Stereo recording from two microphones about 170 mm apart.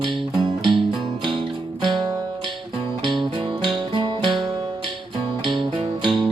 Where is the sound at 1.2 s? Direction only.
30° right (ahead or behind).